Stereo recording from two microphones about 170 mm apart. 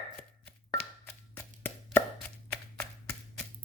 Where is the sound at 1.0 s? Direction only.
10° left (ahead or behind).